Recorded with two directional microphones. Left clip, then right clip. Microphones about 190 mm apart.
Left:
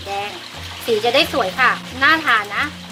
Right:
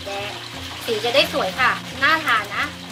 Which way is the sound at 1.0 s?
50° left (ahead or behind).